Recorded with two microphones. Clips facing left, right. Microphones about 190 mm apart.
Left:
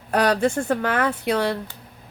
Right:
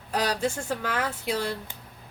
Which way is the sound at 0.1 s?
60° left (ahead or behind).